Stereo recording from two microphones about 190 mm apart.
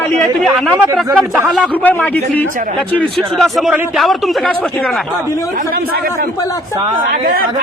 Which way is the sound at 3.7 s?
10° right (ahead or behind).